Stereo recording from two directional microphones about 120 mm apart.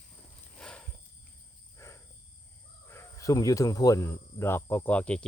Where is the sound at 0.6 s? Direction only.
5° left (ahead or behind).